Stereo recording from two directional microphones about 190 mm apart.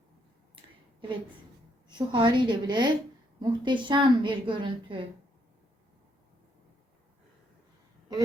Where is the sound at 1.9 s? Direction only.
25° right (ahead or behind).